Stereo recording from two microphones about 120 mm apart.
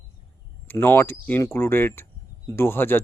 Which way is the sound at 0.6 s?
15° left (ahead or behind).